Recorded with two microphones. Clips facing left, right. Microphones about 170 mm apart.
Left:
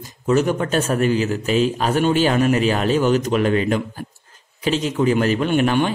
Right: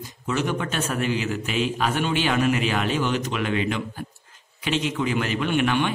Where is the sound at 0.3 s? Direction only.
40° left (ahead or behind).